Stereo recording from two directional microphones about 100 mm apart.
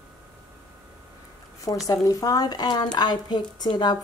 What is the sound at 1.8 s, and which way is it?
Speech, 35° left (ahead or behind).